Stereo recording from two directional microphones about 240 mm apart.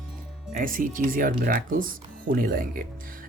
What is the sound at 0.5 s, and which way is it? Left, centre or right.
Speech, right.